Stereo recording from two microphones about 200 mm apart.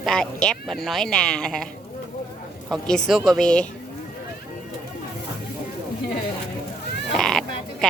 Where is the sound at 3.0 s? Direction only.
Centre (ahead or behind).